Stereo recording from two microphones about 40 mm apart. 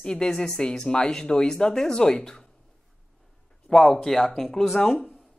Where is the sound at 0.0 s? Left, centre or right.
Centre.